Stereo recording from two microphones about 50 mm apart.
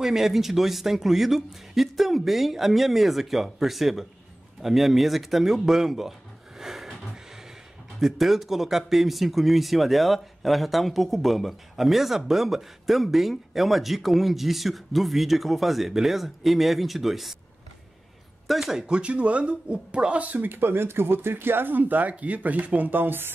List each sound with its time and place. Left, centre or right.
0.0 s a man's voice: centre
6.6 s a sound: centre
8.0 s a man's voice: centre
18.5 s speech: centre; by 23.3 s right